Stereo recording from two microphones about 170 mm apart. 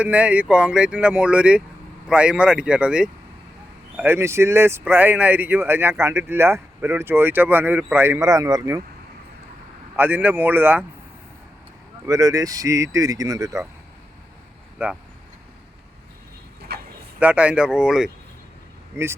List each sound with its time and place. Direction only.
0.0 s speech: 10° right (ahead or behind)
9.9 s speech: 10° right (ahead or behind)
12.0 s speech: 20° right (ahead or behind)
14.8 s speech: 10° right (ahead or behind)
16.6 s a sound: 70° right (ahead or behind)
17.2 s speech: 5° right (ahead or behind)
19.0 s speech: 15° right (ahead or behind)